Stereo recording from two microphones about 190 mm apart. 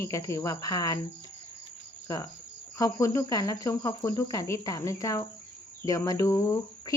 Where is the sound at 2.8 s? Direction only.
15° left (ahead or behind).